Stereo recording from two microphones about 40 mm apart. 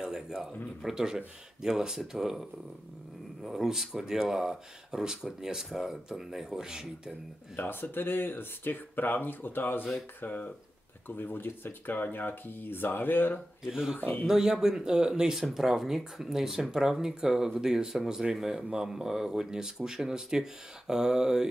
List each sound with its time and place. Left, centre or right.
0.0 s a sound: centre
0.8 s speech: centre
3.4 s speech: centre
7.5 s speech: left
12.0 s speech: left
13.7 s speech: centre
13.9 s speech: left
14.2 s speech: centre
15.5 s speech: centre